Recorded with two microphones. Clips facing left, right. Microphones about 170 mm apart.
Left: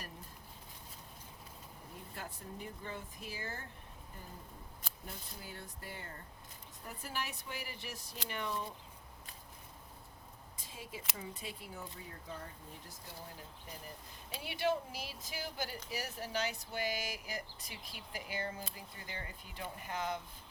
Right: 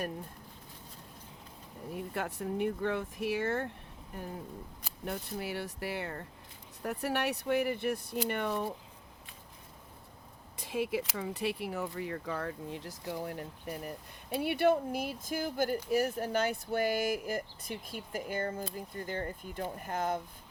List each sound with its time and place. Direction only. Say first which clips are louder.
1.9 s speech: right 12 dB; 70° right (ahead or behind)
5.0 s speech: right 14 dB; 75° right (ahead or behind)
10.6 s speech: right 16 dB; 75° right (ahead or behind); by 20.2 s 50° right (ahead or behind)